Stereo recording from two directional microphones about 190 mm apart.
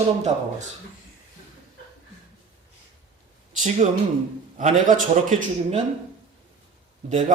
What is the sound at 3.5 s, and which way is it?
Speech, 40° right (ahead or behind).